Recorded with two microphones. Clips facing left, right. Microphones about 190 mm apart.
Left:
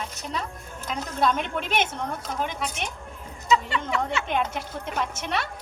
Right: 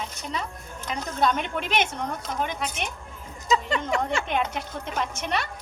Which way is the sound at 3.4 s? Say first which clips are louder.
Left 1 dB; 40° right (ahead or behind).